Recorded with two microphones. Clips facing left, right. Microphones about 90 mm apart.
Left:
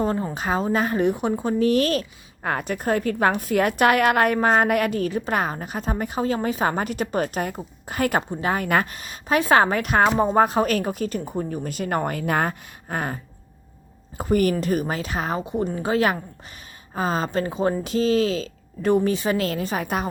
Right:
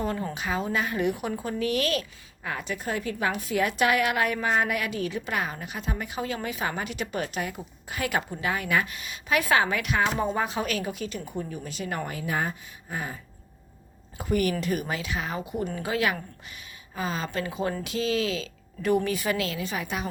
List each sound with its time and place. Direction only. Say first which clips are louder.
0.0 s a woman's voice: left 6 dB; 35° left (ahead or behind)
2.4 s a woman's voice: left 7 dB; 50° left (ahead or behind)
14.2 s a woman's voice: left 5 dB; 45° left (ahead or behind)
19.5 s a woman's voice: left 6 dB; 45° left (ahead or behind)